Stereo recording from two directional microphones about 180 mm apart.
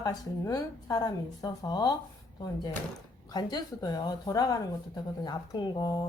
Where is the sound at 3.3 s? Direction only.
20° left (ahead or behind).